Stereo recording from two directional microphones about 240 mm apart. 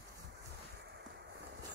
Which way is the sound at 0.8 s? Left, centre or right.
Right.